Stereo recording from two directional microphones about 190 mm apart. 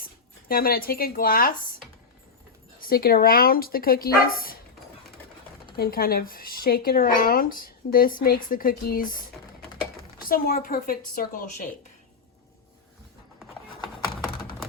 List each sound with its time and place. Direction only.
0.0 s speech: 50° left (ahead or behind)
2.7 s speech: 50° left (ahead or behind)
5.7 s speech: 50° left (ahead or behind)
14.3 s computer keyboard: 25° left (ahead or behind)